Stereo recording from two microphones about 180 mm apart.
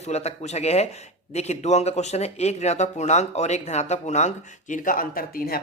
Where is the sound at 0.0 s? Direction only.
35° left (ahead or behind).